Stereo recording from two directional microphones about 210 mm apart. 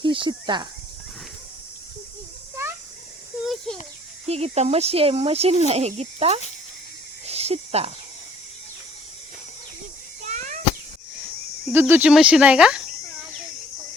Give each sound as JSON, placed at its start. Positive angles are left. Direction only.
{"t": 0.0, "sound": "speech", "side_deg": -25}
{"t": 3.4, "sound": "a sound", "side_deg": 0}
{"t": 4.3, "sound": "speech", "side_deg": -30}
{"t": 7.3, "sound": "cricket", "side_deg": -30}
{"t": 10.2, "sound": "cat", "side_deg": -35}
{"t": 11.7, "sound": "speech", "side_deg": -10}